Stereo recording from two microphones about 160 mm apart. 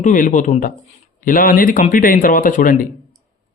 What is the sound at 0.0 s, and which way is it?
A man's voice, 55° left (ahead or behind).